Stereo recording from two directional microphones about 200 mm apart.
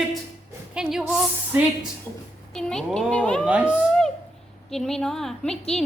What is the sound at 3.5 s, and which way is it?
A child's voice, 5° right (ahead or behind).